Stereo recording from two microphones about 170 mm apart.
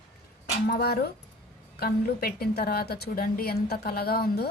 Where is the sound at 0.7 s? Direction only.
65° left (ahead or behind).